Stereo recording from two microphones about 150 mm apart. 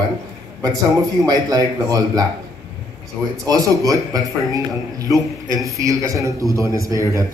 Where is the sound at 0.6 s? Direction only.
25° right (ahead or behind).